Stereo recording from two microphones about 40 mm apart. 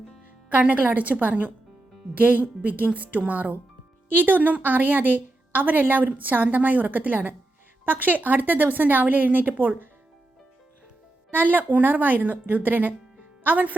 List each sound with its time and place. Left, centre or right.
0.7 s a woman's voice: right
11.3 s a woman's voice: right